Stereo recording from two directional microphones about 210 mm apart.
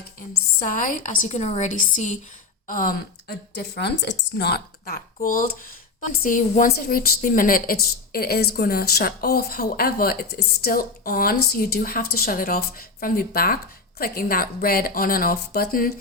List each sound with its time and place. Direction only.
0.3 s a woman's voice: 40° left (ahead or behind)